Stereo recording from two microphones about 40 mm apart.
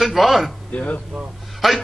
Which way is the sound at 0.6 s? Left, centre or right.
Left.